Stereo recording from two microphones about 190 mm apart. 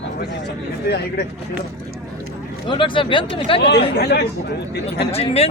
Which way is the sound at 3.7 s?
60° left (ahead or behind).